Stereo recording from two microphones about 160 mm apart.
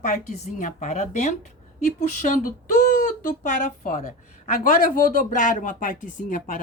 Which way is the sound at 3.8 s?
60° left (ahead or behind).